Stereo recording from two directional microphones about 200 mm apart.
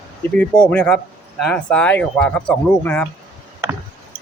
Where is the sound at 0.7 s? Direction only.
5° left (ahead or behind).